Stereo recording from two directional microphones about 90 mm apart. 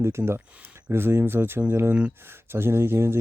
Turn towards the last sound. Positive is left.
turn(degrees=-30)  # may be behind; listen again after turning